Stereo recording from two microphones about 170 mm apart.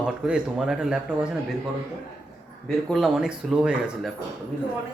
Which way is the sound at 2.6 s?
Centre (ahead or behind).